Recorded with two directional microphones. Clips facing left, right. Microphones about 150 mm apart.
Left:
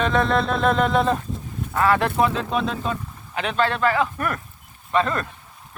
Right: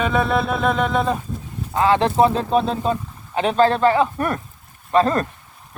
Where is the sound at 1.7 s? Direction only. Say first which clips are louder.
Right 3 dB; 25° right (ahead or behind).